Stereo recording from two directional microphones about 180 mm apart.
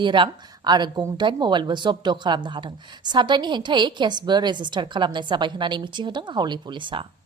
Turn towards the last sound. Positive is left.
turn(degrees=-25)  # may be behind; listen again after turning